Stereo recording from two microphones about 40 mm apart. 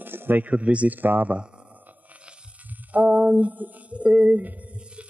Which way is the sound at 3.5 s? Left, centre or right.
Right.